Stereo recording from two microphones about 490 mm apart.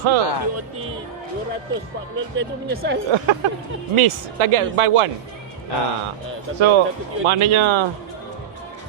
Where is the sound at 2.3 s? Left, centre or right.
Right.